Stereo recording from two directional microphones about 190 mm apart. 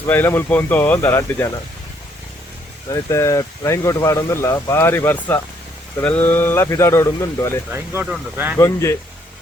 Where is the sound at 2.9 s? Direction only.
15° left (ahead or behind).